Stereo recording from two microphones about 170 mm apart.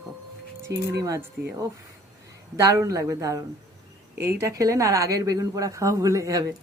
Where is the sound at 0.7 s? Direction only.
20° right (ahead or behind).